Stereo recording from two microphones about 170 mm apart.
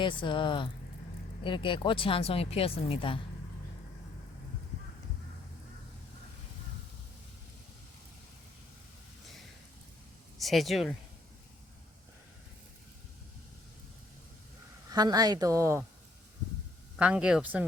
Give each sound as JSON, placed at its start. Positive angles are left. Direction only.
{"t": 0.0, "sound": "speech", "side_deg": 30}
{"t": 10.3, "sound": "speech", "side_deg": 0}
{"t": 14.8, "sound": "a woman's voice", "side_deg": -25}
{"t": 17.0, "sound": "speech", "side_deg": -5}